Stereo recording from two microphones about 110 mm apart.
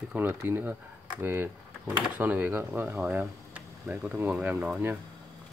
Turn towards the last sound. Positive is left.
turn(degrees=-15)  # may be behind; listen again after turning